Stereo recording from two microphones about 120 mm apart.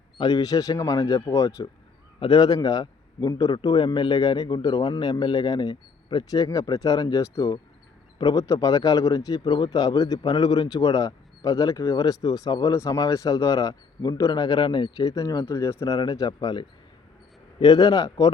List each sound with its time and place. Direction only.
0.2 s speech: 30° left (ahead or behind)
2.1 s speech: 40° left (ahead or behind)